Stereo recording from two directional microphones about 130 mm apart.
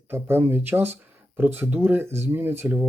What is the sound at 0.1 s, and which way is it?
Speech, 15° right (ahead or behind).